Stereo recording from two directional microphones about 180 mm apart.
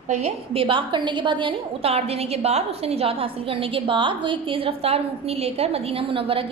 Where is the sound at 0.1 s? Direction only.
35° right (ahead or behind).